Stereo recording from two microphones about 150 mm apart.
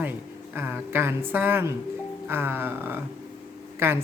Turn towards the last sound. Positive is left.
turn(degrees=-15)  # may be behind; listen again after turning